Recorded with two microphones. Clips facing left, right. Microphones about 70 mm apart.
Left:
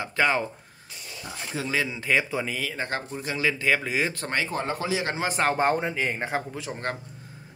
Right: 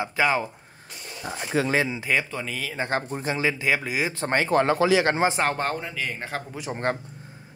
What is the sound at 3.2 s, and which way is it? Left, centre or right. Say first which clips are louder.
Speech: left 2 dB; right.